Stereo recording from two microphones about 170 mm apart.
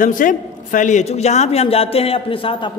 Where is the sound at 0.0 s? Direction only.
50° left (ahead or behind).